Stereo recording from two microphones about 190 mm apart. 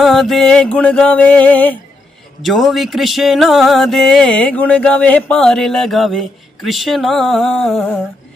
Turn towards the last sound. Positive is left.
turn(degrees=0)  # may be behind; listen again after turning